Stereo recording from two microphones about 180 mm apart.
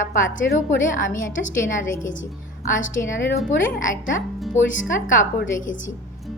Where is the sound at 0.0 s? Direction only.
45° left (ahead or behind).